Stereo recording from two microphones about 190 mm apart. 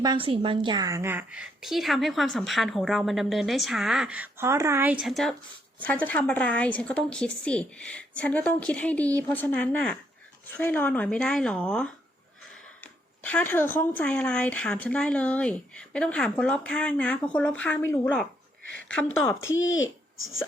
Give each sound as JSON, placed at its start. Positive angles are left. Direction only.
{"t": 0.0, "sound": "a woman's voice", "side_deg": -25}
{"t": 13.2, "sound": "a woman's voice", "side_deg": 10}
{"t": 19.2, "sound": "a woman's voice", "side_deg": 15}
{"t": 19.6, "sound": "speech", "side_deg": 90}